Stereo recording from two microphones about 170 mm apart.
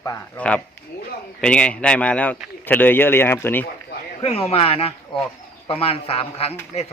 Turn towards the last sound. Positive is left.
turn(degrees=35)  # may be behind; listen again after turning